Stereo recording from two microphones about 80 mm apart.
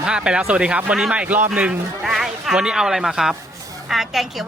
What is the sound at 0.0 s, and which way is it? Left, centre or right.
A man's voice, centre.